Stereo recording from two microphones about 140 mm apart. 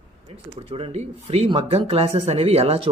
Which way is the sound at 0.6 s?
40° right (ahead or behind).